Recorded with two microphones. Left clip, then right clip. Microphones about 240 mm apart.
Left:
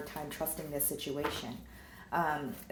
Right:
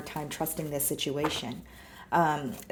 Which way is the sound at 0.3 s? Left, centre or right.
Right.